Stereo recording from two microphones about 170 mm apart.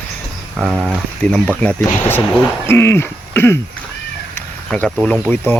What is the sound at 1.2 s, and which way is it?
Speech, 10° left (ahead or behind).